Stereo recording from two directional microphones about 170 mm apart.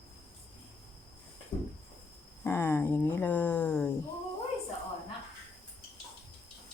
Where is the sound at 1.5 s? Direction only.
15° left (ahead or behind).